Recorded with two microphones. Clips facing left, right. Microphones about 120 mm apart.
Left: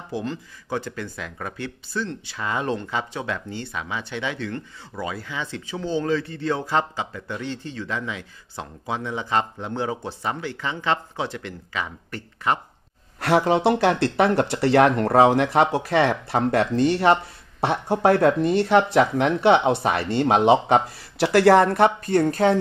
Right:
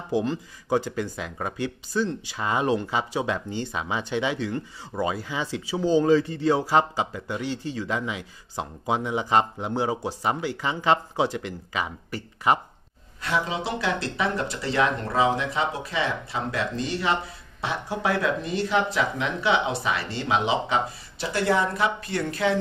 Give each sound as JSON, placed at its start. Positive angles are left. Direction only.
{"t": 0.1, "sound": "speech", "side_deg": -15}
{"t": 13.2, "sound": "speech", "side_deg": 70}
{"t": 21.2, "sound": "speech", "side_deg": 75}